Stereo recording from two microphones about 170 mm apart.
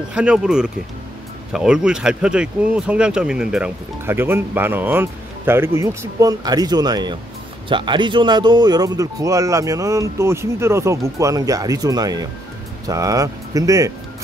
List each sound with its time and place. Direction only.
0.1 s speech: 5° right (ahead or behind)